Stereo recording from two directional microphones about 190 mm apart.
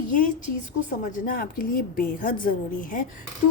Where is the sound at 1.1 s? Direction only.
50° left (ahead or behind).